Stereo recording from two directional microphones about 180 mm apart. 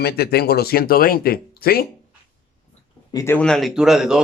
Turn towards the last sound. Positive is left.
turn(degrees=-5)  # may be behind; listen again after turning